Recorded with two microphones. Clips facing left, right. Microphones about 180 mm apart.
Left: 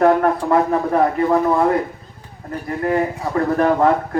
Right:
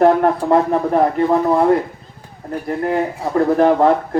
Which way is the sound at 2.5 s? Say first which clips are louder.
Right 1 dB; 35° right (ahead or behind).